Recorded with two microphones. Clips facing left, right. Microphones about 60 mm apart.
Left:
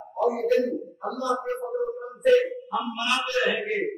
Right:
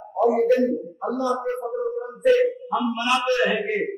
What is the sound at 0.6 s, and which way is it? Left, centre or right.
Speech, right.